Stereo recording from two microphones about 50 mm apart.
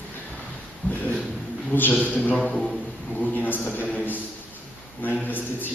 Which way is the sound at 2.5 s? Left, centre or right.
Centre.